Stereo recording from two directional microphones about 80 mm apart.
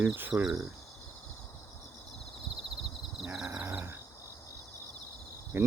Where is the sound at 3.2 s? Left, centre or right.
Centre.